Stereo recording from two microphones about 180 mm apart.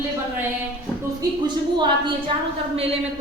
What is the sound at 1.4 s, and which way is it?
Speech, 25° right (ahead or behind).